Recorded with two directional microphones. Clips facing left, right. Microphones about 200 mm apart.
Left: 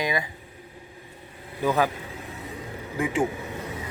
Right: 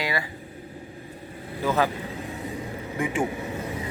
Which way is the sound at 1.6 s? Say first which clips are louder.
Left 1 dB; 15° left (ahead or behind).